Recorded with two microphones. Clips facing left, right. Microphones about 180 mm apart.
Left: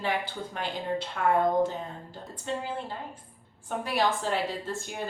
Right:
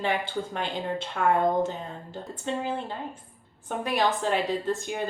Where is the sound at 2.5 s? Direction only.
20° right (ahead or behind).